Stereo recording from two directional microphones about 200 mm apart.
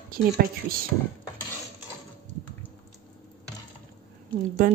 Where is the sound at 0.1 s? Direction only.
45° right (ahead or behind).